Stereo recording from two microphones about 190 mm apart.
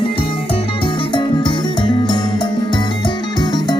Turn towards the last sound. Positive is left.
turn(degrees=20)  # may be behind; listen again after turning